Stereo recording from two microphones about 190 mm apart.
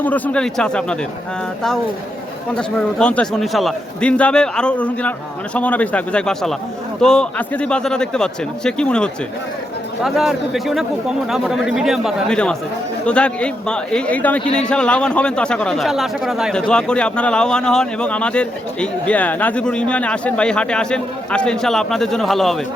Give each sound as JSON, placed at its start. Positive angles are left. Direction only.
{"t": 0.0, "sound": "a man's voice", "side_deg": 5}
{"t": 2.6, "sound": "a man's voice", "side_deg": 5}